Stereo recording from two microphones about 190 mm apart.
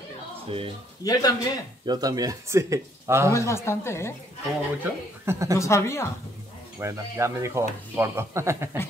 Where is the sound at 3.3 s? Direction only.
15° left (ahead or behind).